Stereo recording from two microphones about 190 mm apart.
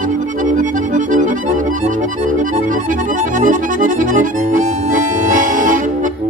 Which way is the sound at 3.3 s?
45° right (ahead or behind).